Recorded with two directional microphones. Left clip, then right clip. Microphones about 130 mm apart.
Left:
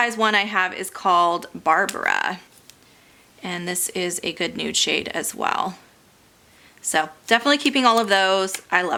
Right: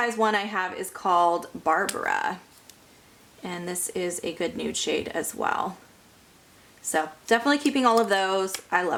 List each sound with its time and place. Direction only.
0.0 s a woman's voice: 20° left (ahead or behind)
3.4 s a woman's voice: 25° left (ahead or behind)
6.9 s a woman's voice: 25° left (ahead or behind)